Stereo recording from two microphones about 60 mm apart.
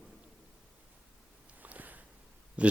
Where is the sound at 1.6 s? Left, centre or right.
Right.